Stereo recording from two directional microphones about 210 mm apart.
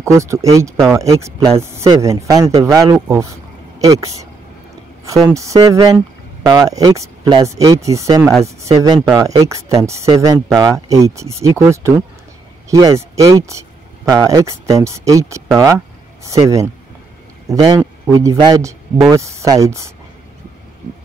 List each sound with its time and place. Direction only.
0.0 s speech: 15° right (ahead or behind)
5.3 s speech: 15° right (ahead or behind)